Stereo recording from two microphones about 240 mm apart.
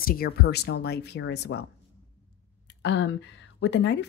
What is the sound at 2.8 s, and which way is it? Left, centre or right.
A woman's voice, left.